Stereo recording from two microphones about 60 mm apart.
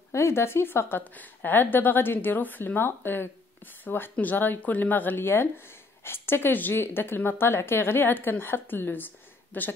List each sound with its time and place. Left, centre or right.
0.1 s speech: left